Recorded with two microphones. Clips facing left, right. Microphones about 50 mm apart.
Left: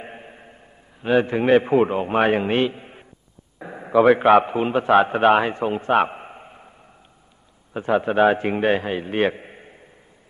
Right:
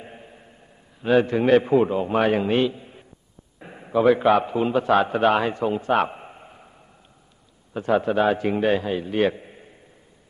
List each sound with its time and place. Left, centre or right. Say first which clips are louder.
0.0 s a sound: left 4 dB; left
1.0 s a man's voice: even; centre
1.9 s a man's voice: left 1 dB; left
4.0 s a man's voice: left 3 dB; left
4.6 s a man's voice: left 2 dB; left
7.7 s a man's voice: left 1 dB; left
8.1 s a man's voice: left 3 dB; left